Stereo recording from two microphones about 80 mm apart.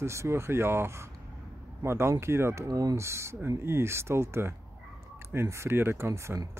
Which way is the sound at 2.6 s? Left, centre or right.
Right.